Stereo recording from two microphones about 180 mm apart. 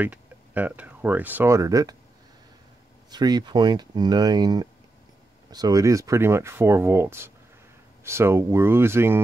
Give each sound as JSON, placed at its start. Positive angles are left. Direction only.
{"t": 0.0, "sound": "speech", "side_deg": -10}
{"t": 3.1, "sound": "speech", "side_deg": -20}